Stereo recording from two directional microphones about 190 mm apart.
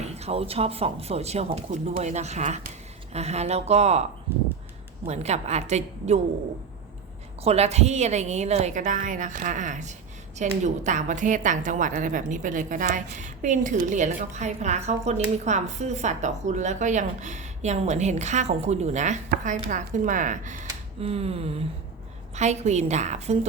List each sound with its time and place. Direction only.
0.0 s a woman's voice: 35° right (ahead or behind)
5.0 s a woman's voice: 35° right (ahead or behind)
7.4 s a woman's voice: 35° right (ahead or behind)